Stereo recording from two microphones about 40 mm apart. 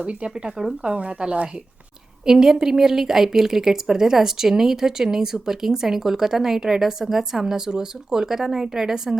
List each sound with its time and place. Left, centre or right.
0.0 s speech: right
2.2 s a woman's voice: centre